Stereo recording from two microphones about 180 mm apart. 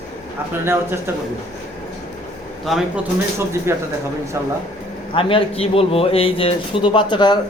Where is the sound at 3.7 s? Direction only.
15° right (ahead or behind).